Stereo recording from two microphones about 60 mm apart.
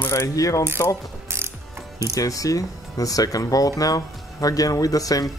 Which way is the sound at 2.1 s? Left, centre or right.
Left.